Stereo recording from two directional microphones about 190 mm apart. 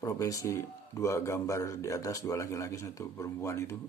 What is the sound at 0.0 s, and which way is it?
Speech, 15° left (ahead or behind).